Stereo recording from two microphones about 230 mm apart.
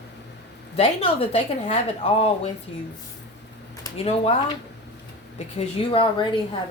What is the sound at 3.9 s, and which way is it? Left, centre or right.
Speech, left.